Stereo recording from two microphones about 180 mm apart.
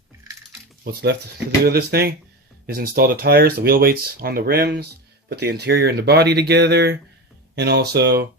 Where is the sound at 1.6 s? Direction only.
60° right (ahead or behind).